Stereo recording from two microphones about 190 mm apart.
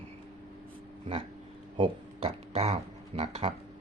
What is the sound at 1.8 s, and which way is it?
Speech, 35° right (ahead or behind).